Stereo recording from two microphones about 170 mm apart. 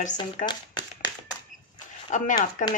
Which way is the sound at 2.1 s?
45° left (ahead or behind).